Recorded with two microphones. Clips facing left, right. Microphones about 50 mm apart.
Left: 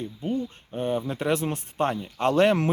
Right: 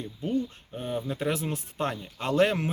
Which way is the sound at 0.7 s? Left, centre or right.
Left.